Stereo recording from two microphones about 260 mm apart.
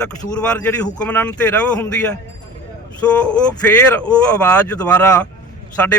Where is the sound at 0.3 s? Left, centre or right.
Centre.